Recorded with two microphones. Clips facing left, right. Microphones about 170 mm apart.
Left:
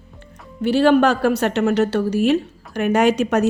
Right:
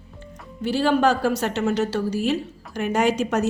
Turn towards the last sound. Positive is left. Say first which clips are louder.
# left 4 dB
turn(degrees=65)  # may be behind; listen again after turning